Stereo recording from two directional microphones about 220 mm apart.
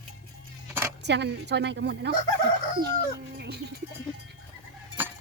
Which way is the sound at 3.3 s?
50° right (ahead or behind).